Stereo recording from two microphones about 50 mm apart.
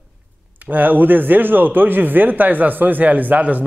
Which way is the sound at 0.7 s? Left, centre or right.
Right.